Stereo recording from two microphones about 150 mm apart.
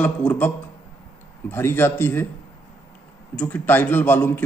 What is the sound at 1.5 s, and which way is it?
Speech, 15° left (ahead or behind).